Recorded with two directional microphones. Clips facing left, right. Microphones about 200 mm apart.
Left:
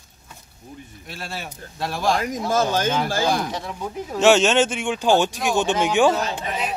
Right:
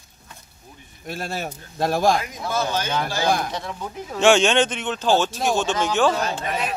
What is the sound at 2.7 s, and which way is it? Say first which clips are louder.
Speech: left 3 dB; 45° left (ahead or behind).